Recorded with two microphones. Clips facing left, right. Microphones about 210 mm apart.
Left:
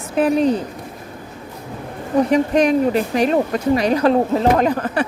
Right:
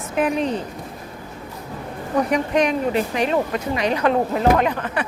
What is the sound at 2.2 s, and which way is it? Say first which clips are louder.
Speech: left 4 dB; 30° left (ahead or behind).